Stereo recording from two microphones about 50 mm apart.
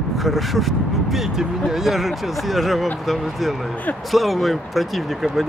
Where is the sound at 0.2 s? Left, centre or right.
Centre.